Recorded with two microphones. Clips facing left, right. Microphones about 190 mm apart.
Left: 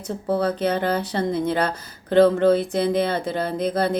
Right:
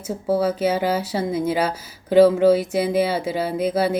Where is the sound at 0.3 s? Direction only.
5° right (ahead or behind).